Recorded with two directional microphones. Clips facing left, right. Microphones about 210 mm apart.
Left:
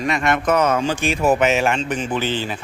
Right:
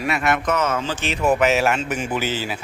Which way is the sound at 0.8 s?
15° left (ahead or behind).